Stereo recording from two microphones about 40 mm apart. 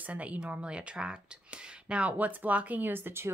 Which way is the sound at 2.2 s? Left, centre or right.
Right.